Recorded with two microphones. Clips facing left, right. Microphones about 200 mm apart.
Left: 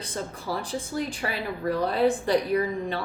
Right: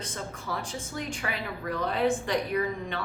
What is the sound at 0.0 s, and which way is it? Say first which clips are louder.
Speech: left 4 dB; 35° left (ahead or behind).